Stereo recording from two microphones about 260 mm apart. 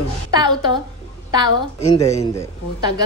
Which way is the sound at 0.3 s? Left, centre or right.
Centre.